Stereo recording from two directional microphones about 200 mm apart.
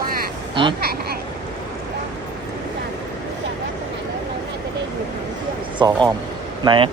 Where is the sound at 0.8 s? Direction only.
50° right (ahead or behind).